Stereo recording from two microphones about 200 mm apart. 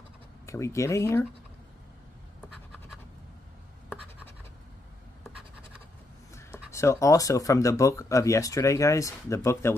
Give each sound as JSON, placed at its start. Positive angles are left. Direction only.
{"t": 0.5, "sound": "speech", "side_deg": 15}
{"t": 6.7, "sound": "speech", "side_deg": 15}